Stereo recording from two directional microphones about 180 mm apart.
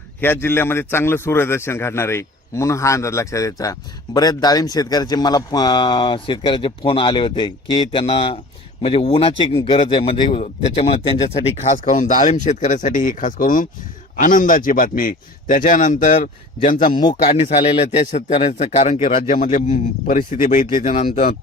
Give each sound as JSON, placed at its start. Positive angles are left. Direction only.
{"t": 0.2, "sound": "a man's voice", "side_deg": 10}
{"t": 11.6, "sound": "speech", "side_deg": 45}
{"t": 16.1, "sound": "speech", "side_deg": 35}
{"t": 16.6, "sound": "speech", "side_deg": 45}
{"t": 17.2, "sound": "a man's voice", "side_deg": 35}